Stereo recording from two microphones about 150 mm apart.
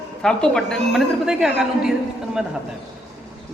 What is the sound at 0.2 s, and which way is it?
Speech, 5° left (ahead or behind).